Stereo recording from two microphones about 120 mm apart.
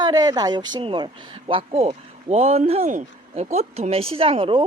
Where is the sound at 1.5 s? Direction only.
55° right (ahead or behind).